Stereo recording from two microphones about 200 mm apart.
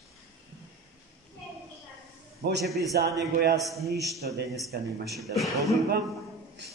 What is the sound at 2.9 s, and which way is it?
Speech, 55° right (ahead or behind).